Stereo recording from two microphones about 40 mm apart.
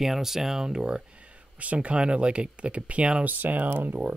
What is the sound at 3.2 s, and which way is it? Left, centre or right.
Speech, right.